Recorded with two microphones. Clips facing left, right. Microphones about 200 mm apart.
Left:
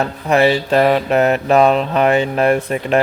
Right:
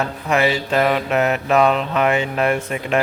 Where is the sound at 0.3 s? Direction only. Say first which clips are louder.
Left 5 dB; 35° left (ahead or behind).